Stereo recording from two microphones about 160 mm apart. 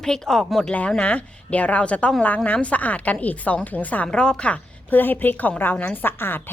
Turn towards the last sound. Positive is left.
turn(degrees=15)  # may be behind; listen again after turning